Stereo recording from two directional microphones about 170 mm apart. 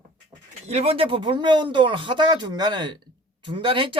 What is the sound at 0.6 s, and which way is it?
Speech, 40° right (ahead or behind).